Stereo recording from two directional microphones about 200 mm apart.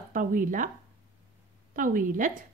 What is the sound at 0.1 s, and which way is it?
Speech, 40° right (ahead or behind).